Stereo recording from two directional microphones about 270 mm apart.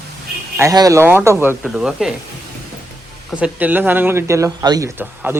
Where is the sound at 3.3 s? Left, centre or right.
Centre.